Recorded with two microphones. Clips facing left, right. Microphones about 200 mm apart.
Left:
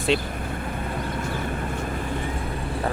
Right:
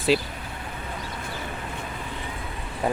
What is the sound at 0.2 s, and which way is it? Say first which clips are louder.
Vehicle: left 6 dB; 50° left (ahead or behind).